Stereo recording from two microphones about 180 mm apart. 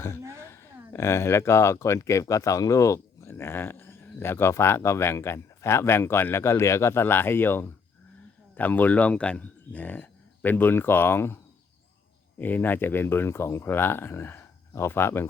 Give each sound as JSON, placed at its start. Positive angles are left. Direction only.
{"t": 0.2, "sound": "speech", "side_deg": -15}
{"t": 0.5, "sound": "speech", "side_deg": 15}
{"t": 12.4, "sound": "speech", "side_deg": 10}